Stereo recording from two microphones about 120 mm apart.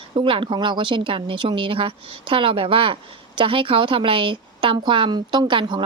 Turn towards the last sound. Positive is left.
turn(degrees=-40)  # may be behind; listen again after turning